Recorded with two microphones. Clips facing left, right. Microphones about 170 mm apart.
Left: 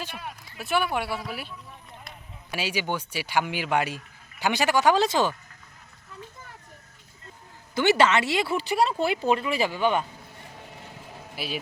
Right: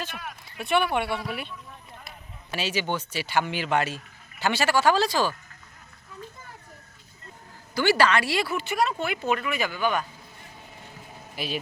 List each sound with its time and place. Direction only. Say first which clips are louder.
0.6 s speech: right 2 dB; 5° left (ahead or behind); by 5.3 s 20° left (ahead or behind)
7.8 s speech: left 1 dB; 20° left (ahead or behind)
8.5 s speech: left 2 dB; 30° left (ahead or behind)
11.3 s speech: right 1 dB; 10° left (ahead or behind)